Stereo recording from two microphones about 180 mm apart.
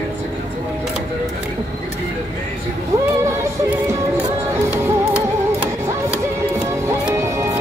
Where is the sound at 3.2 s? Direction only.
15° right (ahead or behind).